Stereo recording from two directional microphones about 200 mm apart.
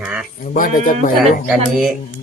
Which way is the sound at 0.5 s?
40° left (ahead or behind).